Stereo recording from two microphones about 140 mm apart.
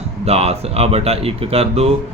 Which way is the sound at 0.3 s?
45° right (ahead or behind).